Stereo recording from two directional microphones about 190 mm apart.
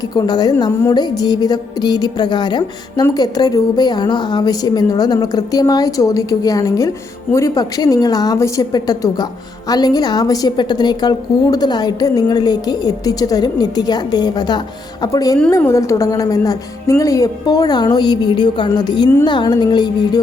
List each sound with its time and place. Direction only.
0.1 s speech: 20° left (ahead or behind)